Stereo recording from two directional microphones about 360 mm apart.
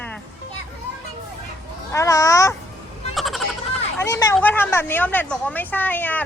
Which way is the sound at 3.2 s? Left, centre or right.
Centre.